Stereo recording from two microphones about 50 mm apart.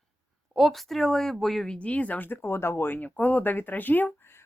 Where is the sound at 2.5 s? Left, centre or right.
Left.